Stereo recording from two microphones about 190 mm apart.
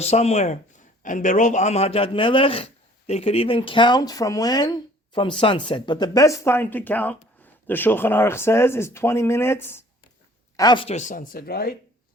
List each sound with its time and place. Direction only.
0.0 s a man's voice: 35° left (ahead or behind)
10.8 s speech: 40° left (ahead or behind)